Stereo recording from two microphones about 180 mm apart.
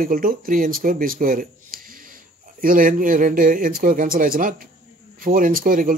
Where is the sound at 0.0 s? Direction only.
50° right (ahead or behind).